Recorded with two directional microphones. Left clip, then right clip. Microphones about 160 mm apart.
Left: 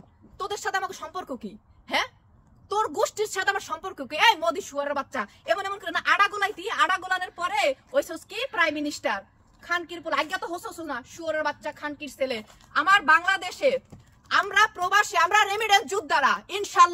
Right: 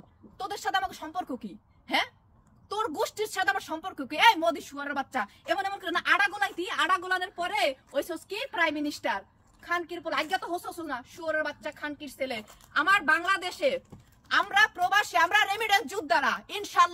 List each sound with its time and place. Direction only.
0.4 s a woman's voice: 15° left (ahead or behind)